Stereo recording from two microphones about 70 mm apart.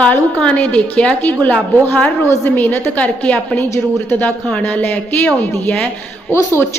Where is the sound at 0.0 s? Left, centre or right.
Centre.